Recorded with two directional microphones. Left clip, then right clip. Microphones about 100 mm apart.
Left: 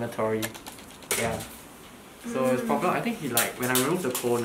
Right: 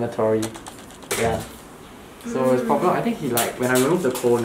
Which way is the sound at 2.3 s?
15° left (ahead or behind).